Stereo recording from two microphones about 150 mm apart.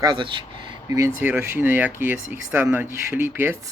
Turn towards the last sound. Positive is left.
turn(degrees=-15)  # may be behind; listen again after turning